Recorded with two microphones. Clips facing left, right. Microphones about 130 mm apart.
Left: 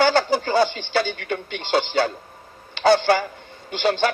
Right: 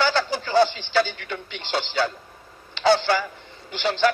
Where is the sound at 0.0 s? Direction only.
55° left (ahead or behind).